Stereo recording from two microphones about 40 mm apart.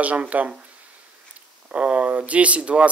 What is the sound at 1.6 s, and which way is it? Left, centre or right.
Speech, right.